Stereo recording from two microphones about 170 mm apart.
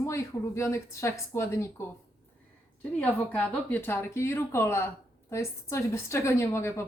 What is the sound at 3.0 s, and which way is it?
A woman's voice, 10° left (ahead or behind).